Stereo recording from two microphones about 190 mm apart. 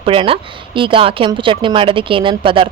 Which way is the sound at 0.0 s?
30° right (ahead or behind).